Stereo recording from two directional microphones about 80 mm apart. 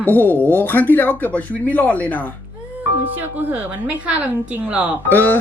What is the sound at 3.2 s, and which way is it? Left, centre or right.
A woman's voice, centre.